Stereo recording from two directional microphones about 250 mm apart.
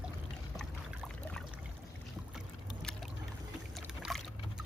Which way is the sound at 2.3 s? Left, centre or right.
Centre.